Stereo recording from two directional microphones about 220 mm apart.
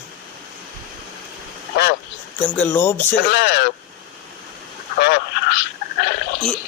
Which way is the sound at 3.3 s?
50° left (ahead or behind).